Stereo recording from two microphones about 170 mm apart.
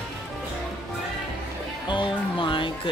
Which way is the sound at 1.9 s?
30° left (ahead or behind).